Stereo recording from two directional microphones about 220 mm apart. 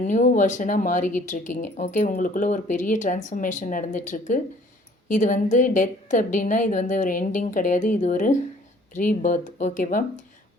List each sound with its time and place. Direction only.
0.0 s speech: 35° left (ahead or behind)